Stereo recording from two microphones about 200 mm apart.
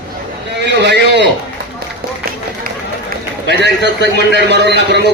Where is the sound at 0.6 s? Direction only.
60° right (ahead or behind).